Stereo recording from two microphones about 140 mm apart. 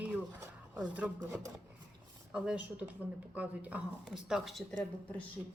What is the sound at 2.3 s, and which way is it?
Speech, 10° right (ahead or behind).